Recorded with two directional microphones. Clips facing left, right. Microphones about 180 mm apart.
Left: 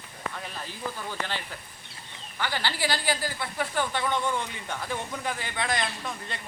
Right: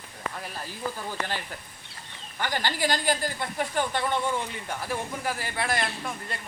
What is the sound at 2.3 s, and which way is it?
A woman's voice, 45° right (ahead or behind).